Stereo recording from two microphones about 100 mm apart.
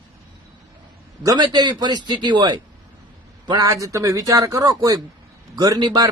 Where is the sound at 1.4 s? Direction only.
50° right (ahead or behind).